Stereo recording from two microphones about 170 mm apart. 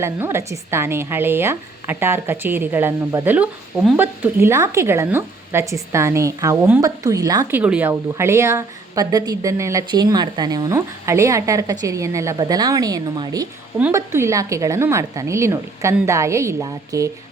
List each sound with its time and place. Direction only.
0.0 s a woman's voice: 15° right (ahead or behind)
7.6 s a woman's voice: 10° right (ahead or behind)